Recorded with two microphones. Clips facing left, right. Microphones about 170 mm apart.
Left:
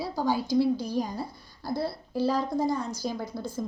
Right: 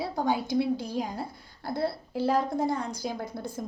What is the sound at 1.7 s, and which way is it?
A woman's voice, 55° right (ahead or behind).